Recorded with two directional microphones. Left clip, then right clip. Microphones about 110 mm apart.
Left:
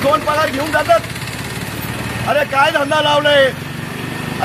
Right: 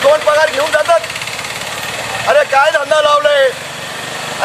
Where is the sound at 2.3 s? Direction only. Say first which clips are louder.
Right 3 dB; 35° right (ahead or behind).